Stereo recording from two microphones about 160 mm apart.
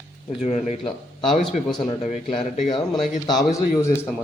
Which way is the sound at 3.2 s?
25° left (ahead or behind).